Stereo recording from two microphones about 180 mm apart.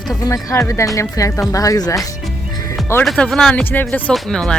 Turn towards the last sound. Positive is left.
turn(degrees=5)  # may be behind; listen again after turning